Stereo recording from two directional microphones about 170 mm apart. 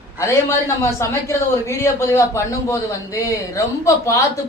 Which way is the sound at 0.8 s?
15° left (ahead or behind).